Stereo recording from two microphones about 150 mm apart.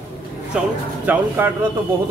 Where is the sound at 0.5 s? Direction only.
5° right (ahead or behind).